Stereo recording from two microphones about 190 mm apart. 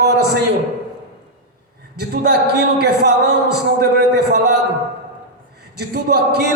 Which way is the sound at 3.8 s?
60° right (ahead or behind).